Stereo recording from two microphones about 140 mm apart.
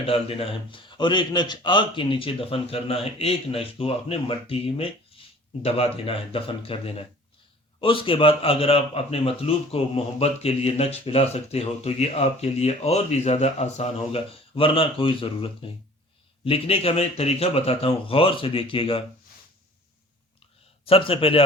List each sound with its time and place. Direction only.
0.0 s a man's voice: 40° left (ahead or behind)
20.8 s speech: 40° left (ahead or behind)